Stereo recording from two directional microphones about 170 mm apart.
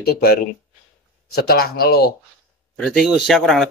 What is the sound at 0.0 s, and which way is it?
Speech, 65° left (ahead or behind).